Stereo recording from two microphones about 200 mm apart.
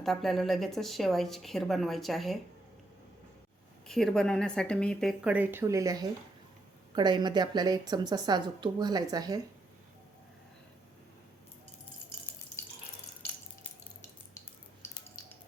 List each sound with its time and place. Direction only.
0.0 s a woman's voice: centre (ahead or behind)
3.8 s a woman's voice: centre (ahead or behind); by 9.4 s 20° right (ahead or behind)
14.3 s a sound: 20° left (ahead or behind)